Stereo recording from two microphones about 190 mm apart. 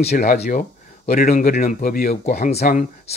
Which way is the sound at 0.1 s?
50° left (ahead or behind).